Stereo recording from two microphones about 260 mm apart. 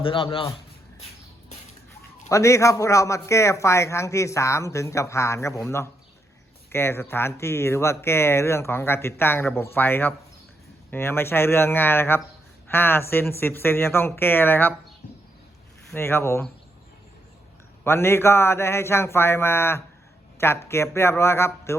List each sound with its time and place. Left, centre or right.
0.0 s a man's voice: centre
2.3 s a man's voice: centre
15.9 s a man's voice: centre
17.8 s a man's voice: centre